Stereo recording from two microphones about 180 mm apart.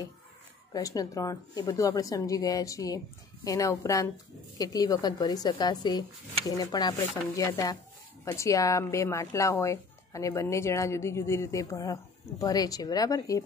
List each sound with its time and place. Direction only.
0.7 s speech: 20° left (ahead or behind)